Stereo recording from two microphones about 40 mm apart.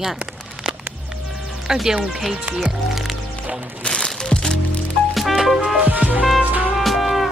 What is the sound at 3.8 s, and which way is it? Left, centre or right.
Speech, left.